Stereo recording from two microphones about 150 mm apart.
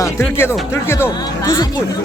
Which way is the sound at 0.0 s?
15° left (ahead or behind).